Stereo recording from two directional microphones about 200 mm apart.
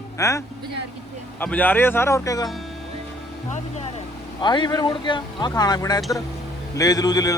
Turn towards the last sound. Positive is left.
turn(degrees=20)  # may be behind; listen again after turning